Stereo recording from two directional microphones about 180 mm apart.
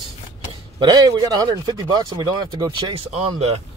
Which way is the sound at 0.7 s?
25° right (ahead or behind).